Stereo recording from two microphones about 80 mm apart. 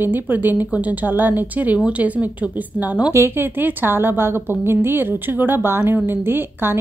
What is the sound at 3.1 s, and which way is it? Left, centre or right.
Speech, right.